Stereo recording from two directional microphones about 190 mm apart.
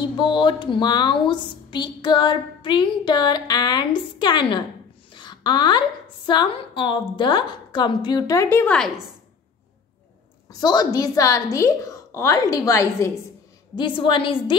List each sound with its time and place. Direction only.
0.2 s a woman's voice: 25° left (ahead or behind); by 9.1 s centre (ahead or behind)
10.6 s a woman's voice: 20° left (ahead or behind)
13.7 s a woman's voice: 25° left (ahead or behind)